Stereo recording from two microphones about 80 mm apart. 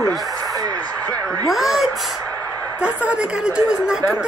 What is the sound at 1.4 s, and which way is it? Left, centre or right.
Speech, centre.